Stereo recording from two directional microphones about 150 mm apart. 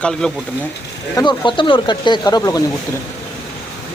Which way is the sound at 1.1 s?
30° left (ahead or behind).